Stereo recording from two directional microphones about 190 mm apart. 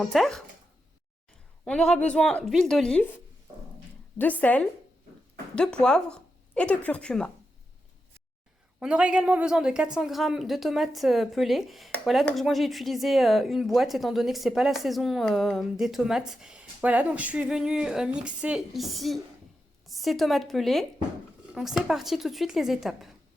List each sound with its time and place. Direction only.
0.0 s speech: centre (ahead or behind)
1.6 s speech: 5° left (ahead or behind)
4.2 s a woman's voice: 10° left (ahead or behind)
8.8 s speech: 5° right (ahead or behind)